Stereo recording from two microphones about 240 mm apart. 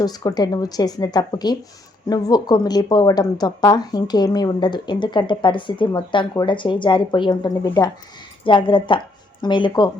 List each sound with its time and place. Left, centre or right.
0.0 s speech: centre